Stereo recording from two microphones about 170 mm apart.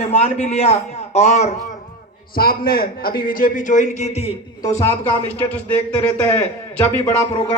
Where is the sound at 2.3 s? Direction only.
60° left (ahead or behind); by 4.4 s 40° left (ahead or behind).